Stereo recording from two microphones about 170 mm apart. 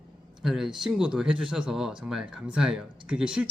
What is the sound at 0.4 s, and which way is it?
Speech, centre (ahead or behind).